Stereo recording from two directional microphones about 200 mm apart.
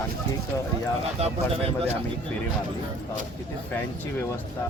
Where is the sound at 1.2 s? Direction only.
30° right (ahead or behind).